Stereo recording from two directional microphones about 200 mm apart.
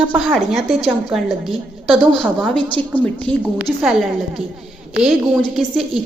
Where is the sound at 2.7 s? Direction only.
5° left (ahead or behind).